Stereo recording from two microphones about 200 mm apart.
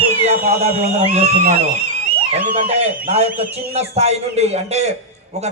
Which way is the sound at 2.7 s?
30° right (ahead or behind).